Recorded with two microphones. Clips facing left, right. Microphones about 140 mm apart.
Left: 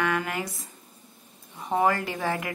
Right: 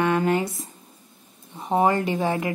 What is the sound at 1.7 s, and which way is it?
Speech, 25° right (ahead or behind).